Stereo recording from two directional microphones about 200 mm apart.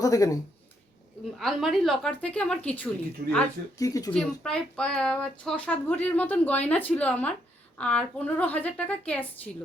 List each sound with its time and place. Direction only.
0.0 s speech: 15° left (ahead or behind)
1.4 s a woman's voice: centre (ahead or behind); by 4.1 s 15° left (ahead or behind)
4.1 s speech: 5° left (ahead or behind)